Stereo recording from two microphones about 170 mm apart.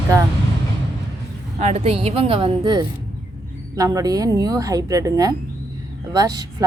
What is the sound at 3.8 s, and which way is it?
A woman's voice, 20° right (ahead or behind).